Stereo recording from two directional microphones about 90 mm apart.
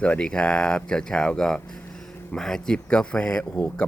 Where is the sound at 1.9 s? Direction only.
5° left (ahead or behind).